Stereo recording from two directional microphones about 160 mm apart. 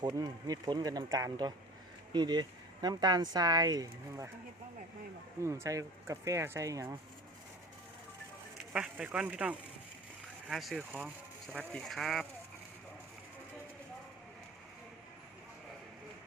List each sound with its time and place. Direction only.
0.0 s speech: 25° right (ahead or behind)
5.4 s speech: 20° right (ahead or behind)
8.7 s a man's voice: 5° right (ahead or behind)